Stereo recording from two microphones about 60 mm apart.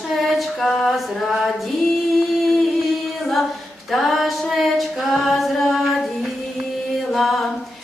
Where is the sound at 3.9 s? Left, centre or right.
Centre.